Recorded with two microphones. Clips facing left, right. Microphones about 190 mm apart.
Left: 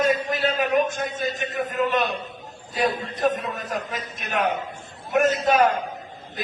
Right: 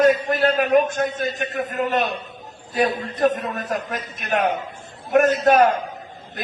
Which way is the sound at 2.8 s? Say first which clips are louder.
Right 4 dB; 60° right (ahead or behind).